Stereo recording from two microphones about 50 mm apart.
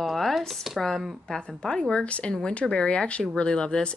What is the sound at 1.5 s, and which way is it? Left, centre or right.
Speech, centre.